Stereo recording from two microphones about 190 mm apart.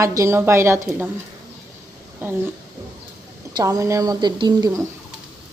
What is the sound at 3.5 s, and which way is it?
Speech, 20° right (ahead or behind).